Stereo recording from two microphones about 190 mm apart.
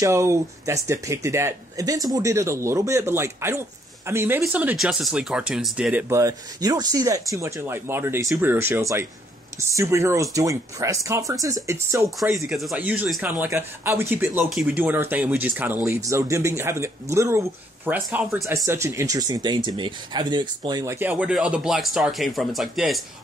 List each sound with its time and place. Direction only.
0.0 s speech: 15° right (ahead or behind)
12.2 s speech: centre (ahead or behind)